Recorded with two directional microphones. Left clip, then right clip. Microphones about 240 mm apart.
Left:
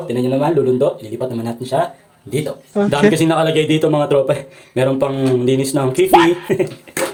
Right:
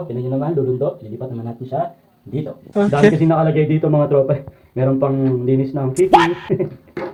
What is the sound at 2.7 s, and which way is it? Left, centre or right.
Speech, centre.